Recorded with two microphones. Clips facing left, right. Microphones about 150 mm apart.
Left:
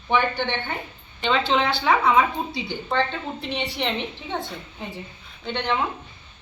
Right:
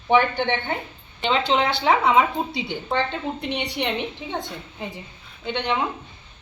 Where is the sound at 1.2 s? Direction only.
20° right (ahead or behind).